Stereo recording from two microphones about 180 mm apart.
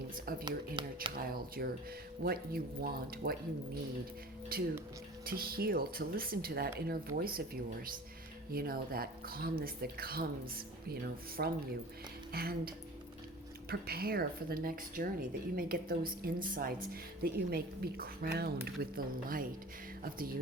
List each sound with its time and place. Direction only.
0.3 s speech: 55° right (ahead or behind)
0.8 s speech: 25° right (ahead or behind)
1.1 s speech: 55° right (ahead or behind)
4.5 s speech: 55° right (ahead or behind)